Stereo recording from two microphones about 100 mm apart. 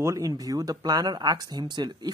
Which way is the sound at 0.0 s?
35° right (ahead or behind).